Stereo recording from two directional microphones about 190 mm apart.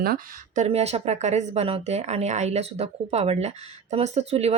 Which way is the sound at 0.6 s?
35° right (ahead or behind).